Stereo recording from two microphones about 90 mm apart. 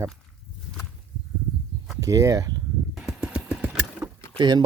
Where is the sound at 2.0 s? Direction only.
40° right (ahead or behind).